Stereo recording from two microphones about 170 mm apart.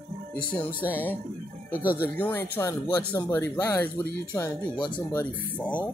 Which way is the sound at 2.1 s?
10° left (ahead or behind).